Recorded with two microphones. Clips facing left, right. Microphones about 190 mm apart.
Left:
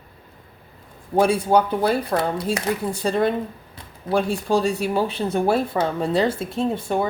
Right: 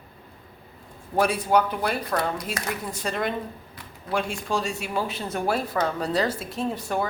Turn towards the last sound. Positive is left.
turn(degrees=25)  # may be behind; listen again after turning